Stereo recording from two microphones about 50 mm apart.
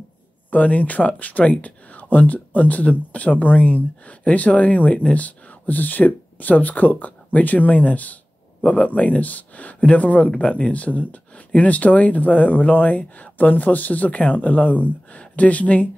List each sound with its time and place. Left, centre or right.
0.5 s speech: left